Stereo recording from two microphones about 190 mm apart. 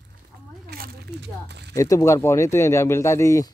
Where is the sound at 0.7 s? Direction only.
60° right (ahead or behind).